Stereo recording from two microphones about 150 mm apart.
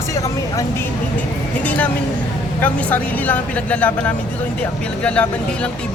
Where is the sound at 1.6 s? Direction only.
10° left (ahead or behind).